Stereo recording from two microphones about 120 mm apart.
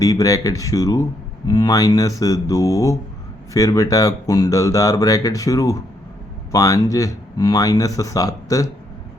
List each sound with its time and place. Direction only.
0.0 s speech: 30° left (ahead or behind)